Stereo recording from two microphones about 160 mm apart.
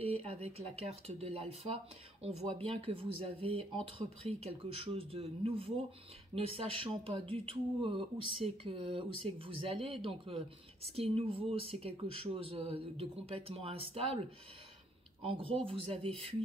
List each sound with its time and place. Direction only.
0.0 s speech: 40° right (ahead or behind)
15.2 s speech: 35° right (ahead or behind)